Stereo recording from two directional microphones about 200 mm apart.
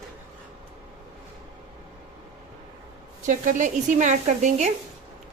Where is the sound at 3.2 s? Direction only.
40° right (ahead or behind).